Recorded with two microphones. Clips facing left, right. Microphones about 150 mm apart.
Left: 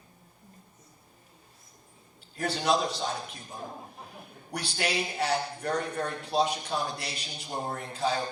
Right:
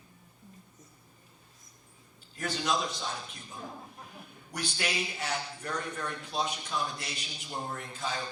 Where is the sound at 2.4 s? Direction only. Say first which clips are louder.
Left 5 dB; 35° left (ahead or behind).